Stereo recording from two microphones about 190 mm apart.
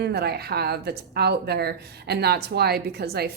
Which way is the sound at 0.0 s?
60° right (ahead or behind).